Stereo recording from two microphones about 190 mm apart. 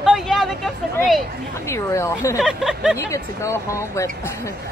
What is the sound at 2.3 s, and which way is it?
Speech, 5° right (ahead or behind).